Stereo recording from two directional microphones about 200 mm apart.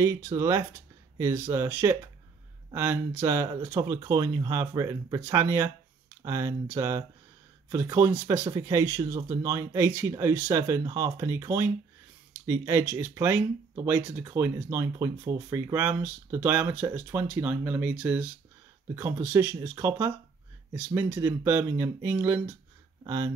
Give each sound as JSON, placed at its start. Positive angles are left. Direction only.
{"t": 0.0, "sound": "speech", "side_deg": -15}